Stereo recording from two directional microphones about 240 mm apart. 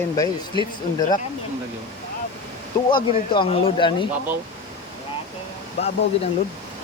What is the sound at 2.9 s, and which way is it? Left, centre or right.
Speech, centre.